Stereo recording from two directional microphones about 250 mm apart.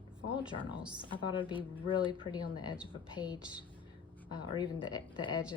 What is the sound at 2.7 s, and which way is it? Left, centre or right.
Speech, centre.